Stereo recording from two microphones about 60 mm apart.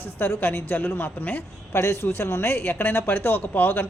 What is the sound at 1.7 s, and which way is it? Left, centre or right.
Speech, left.